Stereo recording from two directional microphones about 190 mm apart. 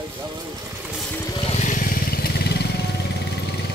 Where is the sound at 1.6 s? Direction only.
45° left (ahead or behind).